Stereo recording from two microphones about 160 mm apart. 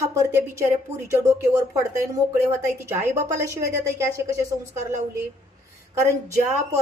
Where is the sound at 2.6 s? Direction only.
15° right (ahead or behind).